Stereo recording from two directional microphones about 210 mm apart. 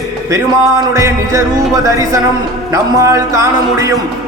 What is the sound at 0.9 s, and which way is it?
A man's voice, 15° right (ahead or behind).